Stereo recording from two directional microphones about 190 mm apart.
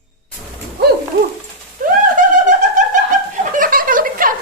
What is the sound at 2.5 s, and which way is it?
Snicker, 40° right (ahead or behind).